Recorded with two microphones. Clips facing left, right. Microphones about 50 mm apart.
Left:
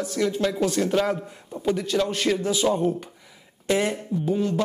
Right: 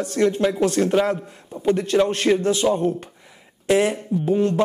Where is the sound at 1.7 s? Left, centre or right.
Right.